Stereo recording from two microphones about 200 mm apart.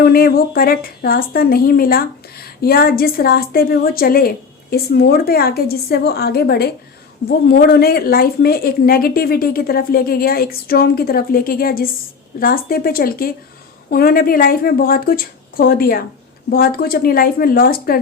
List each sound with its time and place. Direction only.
0.0 s a woman's voice: 50° left (ahead or behind)